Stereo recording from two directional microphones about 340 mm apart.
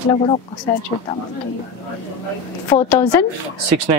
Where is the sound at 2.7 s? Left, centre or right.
Centre.